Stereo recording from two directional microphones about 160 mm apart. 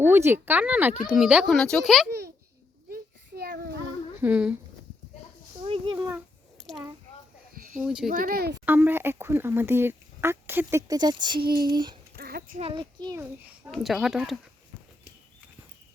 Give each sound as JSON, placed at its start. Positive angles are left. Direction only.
{"t": 0.0, "sound": "speech", "side_deg": -15}
{"t": 2.0, "sound": "a child's voice", "side_deg": -90}
{"t": 2.9, "sound": "a sound", "side_deg": -70}
{"t": 4.2, "sound": "speech", "side_deg": -10}
{"t": 5.6, "sound": "a sound", "side_deg": -30}
{"t": 6.6, "sound": "a sound", "side_deg": 0}
{"t": 7.8, "sound": "speech", "side_deg": -5}
{"t": 8.1, "sound": "speech", "side_deg": -60}
{"t": 8.6, "sound": "speech", "side_deg": -10}
{"t": 12.1, "sound": "a sound", "side_deg": -75}
{"t": 12.5, "sound": "a child's voice", "side_deg": -40}
{"t": 13.0, "sound": "speech", "side_deg": -25}
{"t": 13.7, "sound": "speech", "side_deg": 0}